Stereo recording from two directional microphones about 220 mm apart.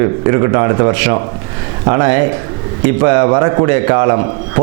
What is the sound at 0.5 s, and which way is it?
A man's voice, 25° right (ahead or behind).